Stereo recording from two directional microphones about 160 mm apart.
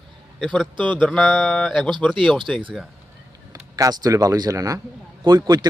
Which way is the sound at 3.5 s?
25° right (ahead or behind).